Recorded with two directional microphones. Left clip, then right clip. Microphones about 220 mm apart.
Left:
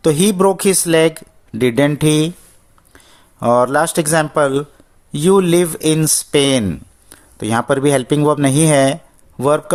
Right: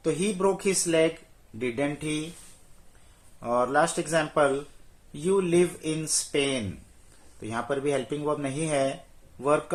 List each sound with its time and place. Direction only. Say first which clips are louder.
0.0 s speech: left 12 dB; 50° left (ahead or behind)
3.4 s speech: left 11 dB; 50° left (ahead or behind)